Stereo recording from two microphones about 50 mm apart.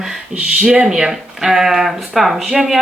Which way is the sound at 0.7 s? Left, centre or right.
Right.